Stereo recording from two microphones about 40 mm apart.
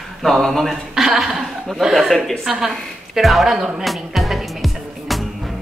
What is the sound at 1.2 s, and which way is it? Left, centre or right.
A woman's voice, centre.